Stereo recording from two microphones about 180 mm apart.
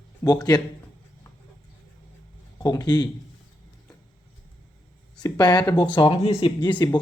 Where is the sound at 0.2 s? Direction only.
15° left (ahead or behind).